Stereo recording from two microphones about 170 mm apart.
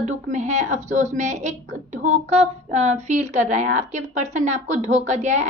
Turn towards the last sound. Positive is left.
turn(degrees=-45)  # may be behind; listen again after turning